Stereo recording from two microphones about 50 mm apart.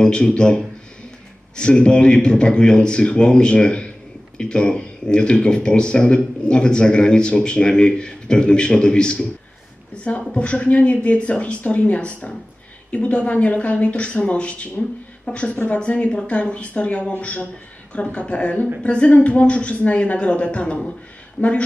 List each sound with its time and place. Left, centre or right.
0.0 s a man's voice: centre
10.3 s speech: left